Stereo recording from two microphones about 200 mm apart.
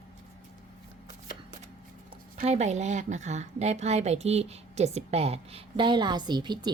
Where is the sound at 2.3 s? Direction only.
35° right (ahead or behind).